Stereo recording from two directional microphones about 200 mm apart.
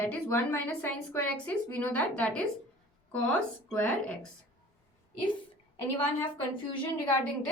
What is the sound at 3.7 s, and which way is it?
Speech, 5° left (ahead or behind).